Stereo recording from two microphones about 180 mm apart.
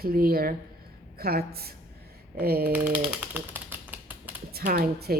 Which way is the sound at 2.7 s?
10° right (ahead or behind).